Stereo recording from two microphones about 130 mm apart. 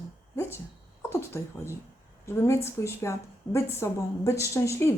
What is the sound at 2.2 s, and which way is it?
A woman's voice, 20° left (ahead or behind).